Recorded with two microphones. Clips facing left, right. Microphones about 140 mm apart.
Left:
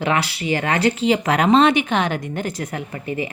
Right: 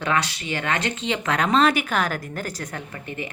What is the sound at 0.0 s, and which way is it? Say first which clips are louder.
Speech: left 3 dB; 30° left (ahead or behind).